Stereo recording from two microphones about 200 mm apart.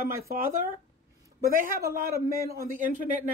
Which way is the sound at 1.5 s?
45° right (ahead or behind).